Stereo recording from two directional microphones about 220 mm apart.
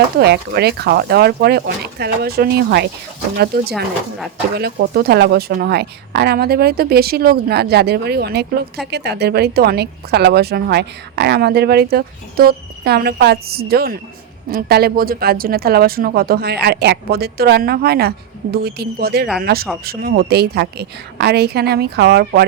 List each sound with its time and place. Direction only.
0.2 s a woman's voice: 45° right (ahead or behind)